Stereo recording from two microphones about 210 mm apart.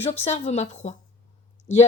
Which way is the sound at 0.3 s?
30° left (ahead or behind).